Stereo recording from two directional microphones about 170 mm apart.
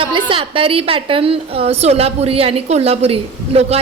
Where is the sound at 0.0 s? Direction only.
30° right (ahead or behind).